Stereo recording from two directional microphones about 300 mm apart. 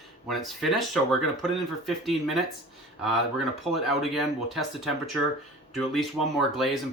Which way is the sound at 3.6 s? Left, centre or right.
Centre.